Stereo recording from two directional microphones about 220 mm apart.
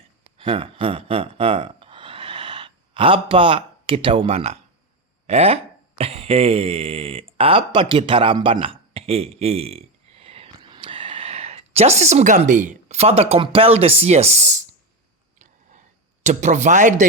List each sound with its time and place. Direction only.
0.3 s speech: 25° right (ahead or behind)
16.2 s speech: 35° right (ahead or behind)